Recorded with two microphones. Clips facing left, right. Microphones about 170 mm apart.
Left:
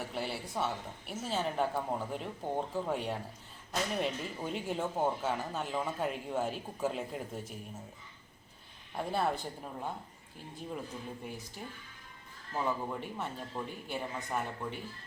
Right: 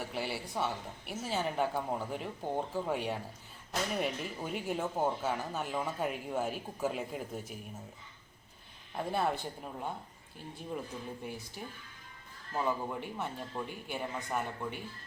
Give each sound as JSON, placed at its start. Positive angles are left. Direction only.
{"t": 0.1, "sound": "speech", "side_deg": -5}
{"t": 9.0, "sound": "speech", "side_deg": 0}
{"t": 12.5, "sound": "speech", "side_deg": -5}